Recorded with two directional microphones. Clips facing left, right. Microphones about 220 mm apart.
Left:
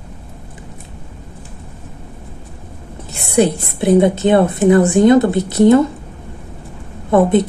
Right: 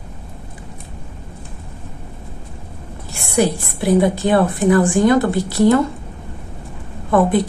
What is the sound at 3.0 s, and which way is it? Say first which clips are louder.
A woman's voice: left 3 dB; 20° left (ahead or behind).